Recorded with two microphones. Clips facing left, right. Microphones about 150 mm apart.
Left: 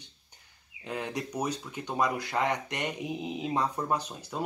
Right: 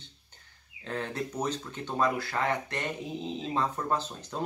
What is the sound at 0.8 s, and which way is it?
Speech, 10° left (ahead or behind).